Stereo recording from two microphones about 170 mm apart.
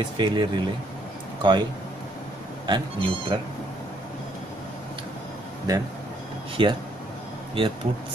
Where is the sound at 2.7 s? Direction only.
30° right (ahead or behind).